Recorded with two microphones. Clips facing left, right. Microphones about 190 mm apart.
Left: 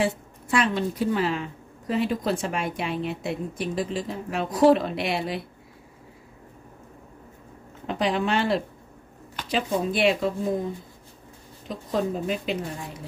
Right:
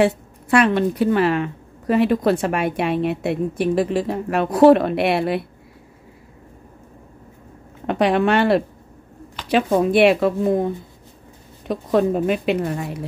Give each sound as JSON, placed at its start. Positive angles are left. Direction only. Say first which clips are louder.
{"t": 0.0, "sound": "a woman's voice", "louder": "right 8 dB", "side_deg": -65}
{"t": 7.8, "sound": "a woman's voice", "louder": "right 7 dB", "side_deg": -65}